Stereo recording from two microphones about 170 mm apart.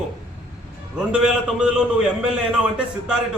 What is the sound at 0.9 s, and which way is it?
A man's voice, 5° right (ahead or behind).